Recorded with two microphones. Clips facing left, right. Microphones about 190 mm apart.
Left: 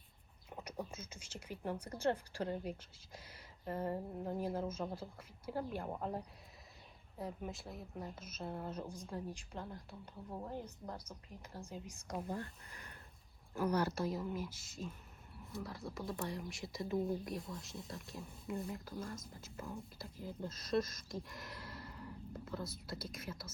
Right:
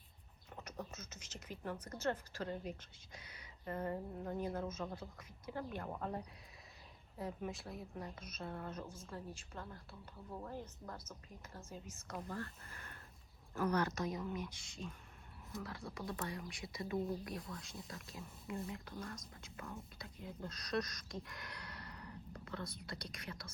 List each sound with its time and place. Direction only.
0.5 s a woman's voice: 10° left (ahead or behind)
7.2 s speech: centre (ahead or behind)
8.4 s a woman's voice: 25° left (ahead or behind)
8.6 s speech: 10° left (ahead or behind)